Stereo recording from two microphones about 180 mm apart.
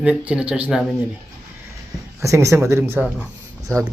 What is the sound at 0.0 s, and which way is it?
Speech, 5° right (ahead or behind).